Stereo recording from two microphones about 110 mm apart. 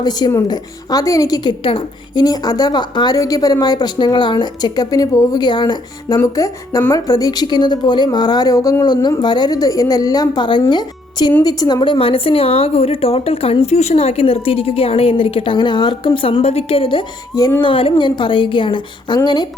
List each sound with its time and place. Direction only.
0.0 s a woman's voice: 35° left (ahead or behind)
1.5 s a woman's voice: 50° left (ahead or behind)
2.2 s a woman's voice: 35° left (ahead or behind)
6.1 s a woman's voice: 30° left (ahead or behind)